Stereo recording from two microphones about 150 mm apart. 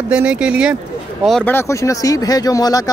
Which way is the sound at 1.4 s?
15° left (ahead or behind).